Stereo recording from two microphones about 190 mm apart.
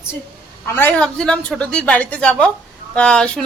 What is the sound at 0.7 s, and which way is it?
A woman's voice, 10° left (ahead or behind).